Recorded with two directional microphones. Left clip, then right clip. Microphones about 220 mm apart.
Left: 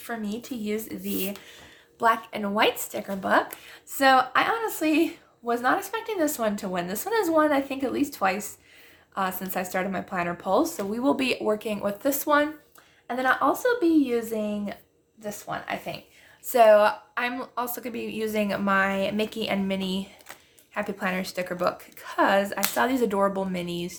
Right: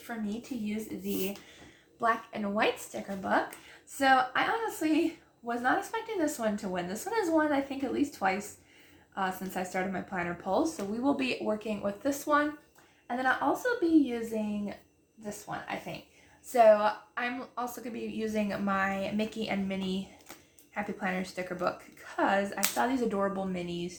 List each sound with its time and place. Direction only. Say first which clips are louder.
0.1 s speech: left 5 dB; 45° left (ahead or behind)
2.0 s speech: left 6 dB; 40° left (ahead or behind)